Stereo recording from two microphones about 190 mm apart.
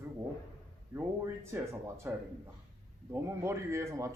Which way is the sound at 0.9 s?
10° right (ahead or behind).